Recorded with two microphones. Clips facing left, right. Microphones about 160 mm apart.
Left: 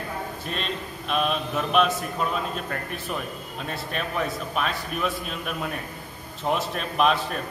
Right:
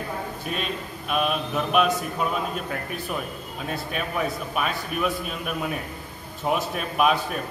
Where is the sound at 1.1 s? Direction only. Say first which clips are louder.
Right 1 dB; 5° right (ahead or behind).